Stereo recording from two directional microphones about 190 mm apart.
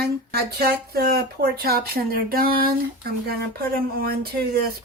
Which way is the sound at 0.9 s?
55° right (ahead or behind).